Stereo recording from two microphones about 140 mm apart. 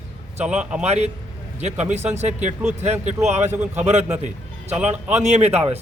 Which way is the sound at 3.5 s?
15° right (ahead or behind).